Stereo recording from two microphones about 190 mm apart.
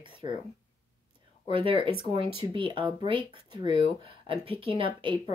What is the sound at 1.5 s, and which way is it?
Speech, 30° right (ahead or behind).